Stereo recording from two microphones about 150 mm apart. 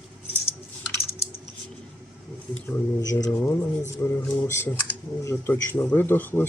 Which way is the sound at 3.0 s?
25° left (ahead or behind).